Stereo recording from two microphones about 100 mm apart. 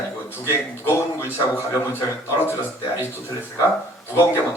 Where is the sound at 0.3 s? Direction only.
25° left (ahead or behind).